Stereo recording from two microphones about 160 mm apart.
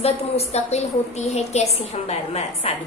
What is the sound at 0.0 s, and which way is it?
A woman's voice, 40° left (ahead or behind).